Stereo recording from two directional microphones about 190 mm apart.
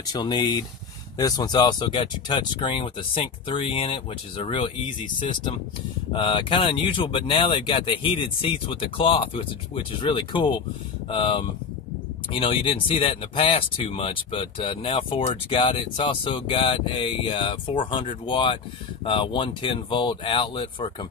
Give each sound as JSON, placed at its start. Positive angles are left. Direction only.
{"t": 0.0, "sound": "speech", "side_deg": 20}